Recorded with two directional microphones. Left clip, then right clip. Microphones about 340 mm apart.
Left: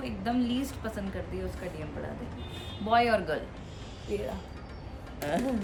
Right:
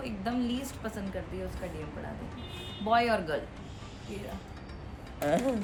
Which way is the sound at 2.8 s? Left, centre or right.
Centre.